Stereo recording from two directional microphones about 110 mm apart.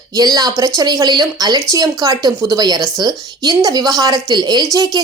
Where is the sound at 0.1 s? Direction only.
35° right (ahead or behind).